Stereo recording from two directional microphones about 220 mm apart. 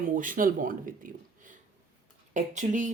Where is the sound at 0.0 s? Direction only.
35° right (ahead or behind).